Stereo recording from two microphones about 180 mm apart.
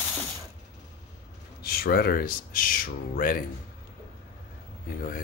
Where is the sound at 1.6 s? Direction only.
60° left (ahead or behind).